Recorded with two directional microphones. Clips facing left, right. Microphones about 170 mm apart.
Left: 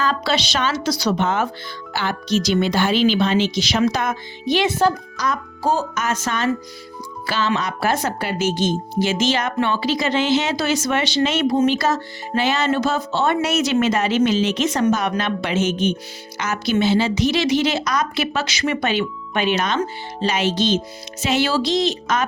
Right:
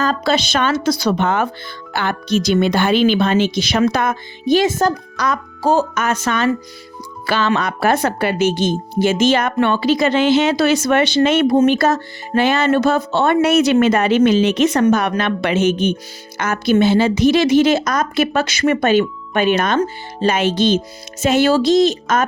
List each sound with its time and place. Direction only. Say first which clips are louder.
0.0 s a woman's voice: right 4 dB; 45° right (ahead or behind)
5.1 s a woman's voice: right 3 dB; 75° right (ahead or behind); by 22.2 s 45° right (ahead or behind)